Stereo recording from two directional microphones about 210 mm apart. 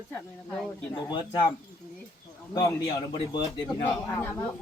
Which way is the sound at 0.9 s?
20° left (ahead or behind).